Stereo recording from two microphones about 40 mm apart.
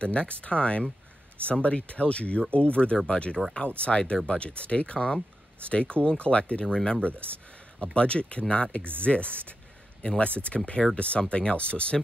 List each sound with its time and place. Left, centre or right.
0.0 s speech: left